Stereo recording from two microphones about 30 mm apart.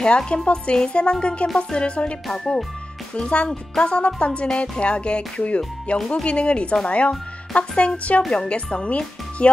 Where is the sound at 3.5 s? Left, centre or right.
Left.